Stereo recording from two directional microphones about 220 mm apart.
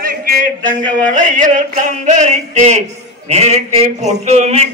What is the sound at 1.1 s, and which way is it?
Music, 35° right (ahead or behind).